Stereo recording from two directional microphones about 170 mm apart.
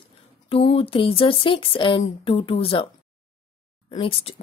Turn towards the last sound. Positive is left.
turn(degrees=35)  # may be behind; listen again after turning